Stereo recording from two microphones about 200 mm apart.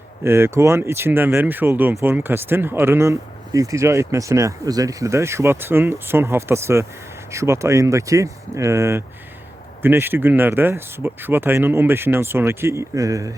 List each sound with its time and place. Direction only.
0.3 s speech: 10° right (ahead or behind)